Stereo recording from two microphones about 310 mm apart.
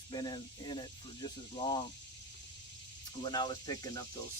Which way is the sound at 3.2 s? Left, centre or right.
Centre.